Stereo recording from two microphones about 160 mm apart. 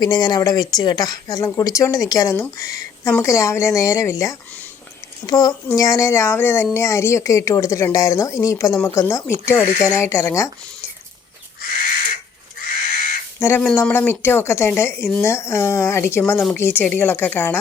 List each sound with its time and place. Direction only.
0.0 s speech: 25° left (ahead or behind)
13.4 s speech: 10° left (ahead or behind)